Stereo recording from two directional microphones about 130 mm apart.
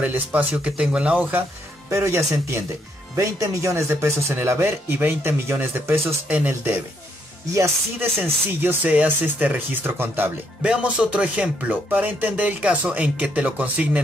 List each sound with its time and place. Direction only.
0.0 s speech: 10° right (ahead or behind)
1.9 s speech: 20° right (ahead or behind)